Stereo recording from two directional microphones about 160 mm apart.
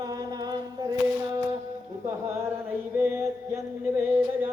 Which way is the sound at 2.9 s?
15° right (ahead or behind).